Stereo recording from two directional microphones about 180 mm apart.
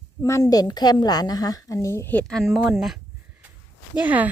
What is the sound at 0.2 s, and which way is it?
A woman's voice, 15° left (ahead or behind).